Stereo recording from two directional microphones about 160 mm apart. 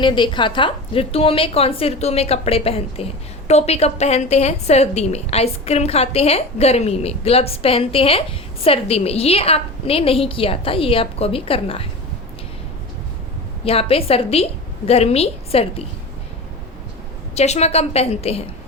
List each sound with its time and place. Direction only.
0.0 s a woman's voice: 30° left (ahead or behind)
13.7 s a woman's voice: 35° left (ahead or behind)
17.3 s a woman's voice: 45° left (ahead or behind)